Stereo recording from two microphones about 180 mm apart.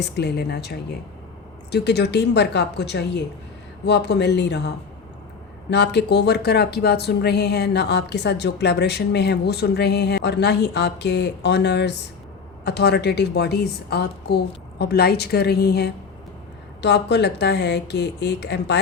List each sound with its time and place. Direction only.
0.0 s a woman's voice: 65° left (ahead or behind)
5.7 s a woman's voice: 70° left (ahead or behind)